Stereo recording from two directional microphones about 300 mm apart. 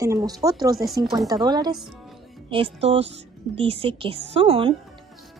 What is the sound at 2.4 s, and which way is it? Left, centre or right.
Speech, centre.